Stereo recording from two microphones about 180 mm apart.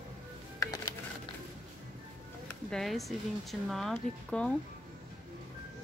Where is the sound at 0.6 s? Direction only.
20° left (ahead or behind).